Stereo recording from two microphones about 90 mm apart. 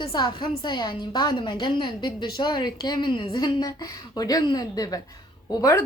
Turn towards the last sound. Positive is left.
turn(degrees=35)  # may be behind; listen again after turning